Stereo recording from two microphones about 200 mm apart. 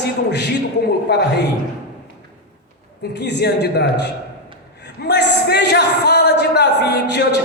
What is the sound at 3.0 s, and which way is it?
A man's voice, 55° left (ahead or behind).